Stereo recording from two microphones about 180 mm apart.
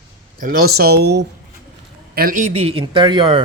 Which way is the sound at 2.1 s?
50° right (ahead or behind).